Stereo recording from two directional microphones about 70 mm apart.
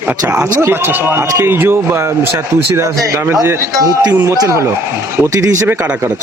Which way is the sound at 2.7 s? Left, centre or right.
Right.